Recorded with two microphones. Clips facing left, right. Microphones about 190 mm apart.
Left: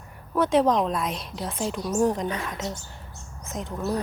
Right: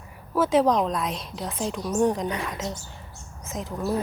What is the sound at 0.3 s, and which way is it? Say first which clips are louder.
A woman's voice: even; centre (ahead or behind).